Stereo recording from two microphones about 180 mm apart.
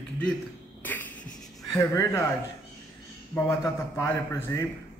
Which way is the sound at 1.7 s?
15° left (ahead or behind).